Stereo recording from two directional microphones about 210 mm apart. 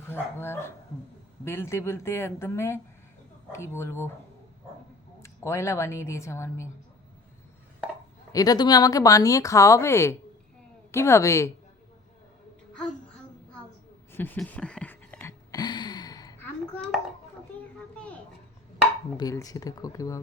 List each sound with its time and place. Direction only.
0.1 s speech: 10° left (ahead or behind)
5.2 s speech: 15° left (ahead or behind)
8.3 s speech: 15° left (ahead or behind)
14.1 s a sound: 10° left (ahead or behind)
16.7 s a sound: 5° left (ahead or behind)
17.6 s children playing: 5° left (ahead or behind)
19.1 s speech: 15° left (ahead or behind)